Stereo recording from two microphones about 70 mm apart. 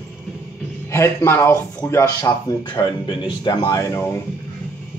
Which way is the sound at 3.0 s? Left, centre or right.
Left.